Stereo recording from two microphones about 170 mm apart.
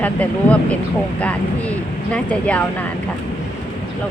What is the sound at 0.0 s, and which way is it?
Speech, 10° left (ahead or behind).